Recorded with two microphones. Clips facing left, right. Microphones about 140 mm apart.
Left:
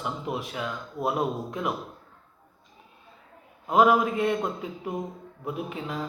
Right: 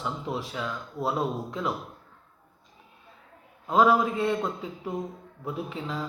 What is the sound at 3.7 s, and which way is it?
A man's voice, 20° left (ahead or behind).